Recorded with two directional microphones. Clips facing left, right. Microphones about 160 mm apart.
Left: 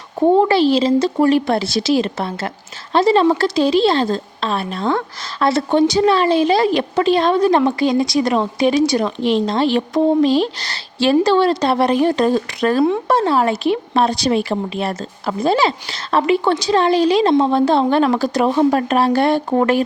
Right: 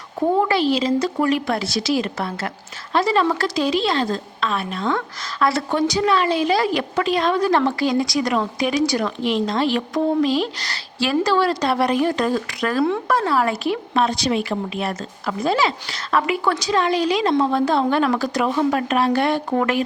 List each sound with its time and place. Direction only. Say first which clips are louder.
0.2 s a woman's voice: left 6 dB; 25° left (ahead or behind)
14.0 s a woman's voice: left 3 dB; 35° left (ahead or behind)